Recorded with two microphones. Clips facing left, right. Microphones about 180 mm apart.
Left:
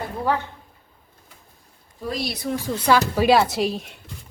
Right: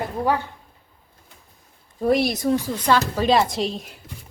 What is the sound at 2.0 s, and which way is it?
Speech, 55° right (ahead or behind).